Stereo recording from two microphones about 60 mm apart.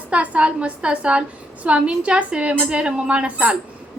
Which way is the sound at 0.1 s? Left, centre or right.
Right.